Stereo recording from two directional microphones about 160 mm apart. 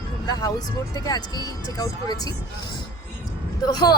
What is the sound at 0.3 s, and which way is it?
A woman's voice, 25° left (ahead or behind).